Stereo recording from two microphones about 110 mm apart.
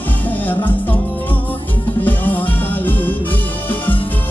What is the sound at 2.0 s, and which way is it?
Music, 15° left (ahead or behind).